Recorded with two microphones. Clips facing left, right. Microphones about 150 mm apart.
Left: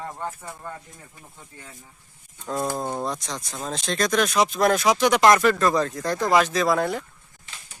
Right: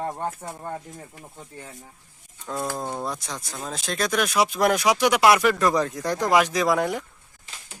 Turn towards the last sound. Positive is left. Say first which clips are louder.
# even
turn(degrees=-15)  # may be behind; listen again after turning